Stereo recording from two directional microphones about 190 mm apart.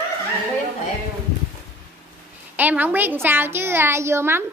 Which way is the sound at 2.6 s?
10° right (ahead or behind).